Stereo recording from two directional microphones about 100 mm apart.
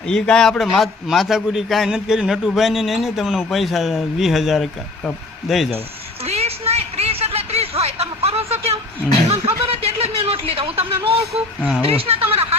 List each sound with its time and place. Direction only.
0.1 s a man's voice: 5° left (ahead or behind)
6.2 s a sound: 90° right
9.3 s speech: 85° right